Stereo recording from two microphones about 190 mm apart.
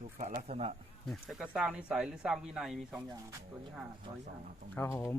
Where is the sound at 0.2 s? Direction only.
35° right (ahead or behind).